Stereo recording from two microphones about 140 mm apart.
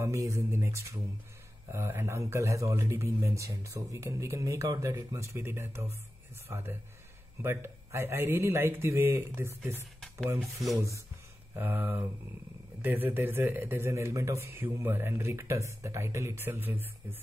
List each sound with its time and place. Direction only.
0.0 s a man's voice: 20° right (ahead or behind)
10.4 s speech: centre (ahead or behind)
11.5 s a man's voice: 15° right (ahead or behind)